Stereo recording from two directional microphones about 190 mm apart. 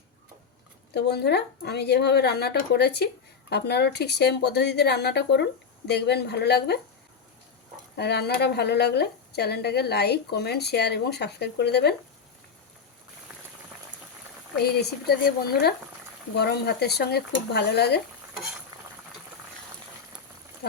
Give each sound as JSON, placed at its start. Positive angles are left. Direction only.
{"t": 0.9, "sound": "a woman's voice", "side_deg": 60}
{"t": 7.9, "sound": "a woman's voice", "side_deg": 60}
{"t": 14.6, "sound": "a woman's voice", "side_deg": 55}